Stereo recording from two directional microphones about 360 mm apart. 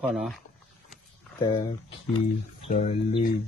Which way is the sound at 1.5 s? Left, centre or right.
Centre.